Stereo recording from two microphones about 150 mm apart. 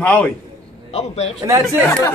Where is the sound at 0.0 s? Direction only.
10° left (ahead or behind).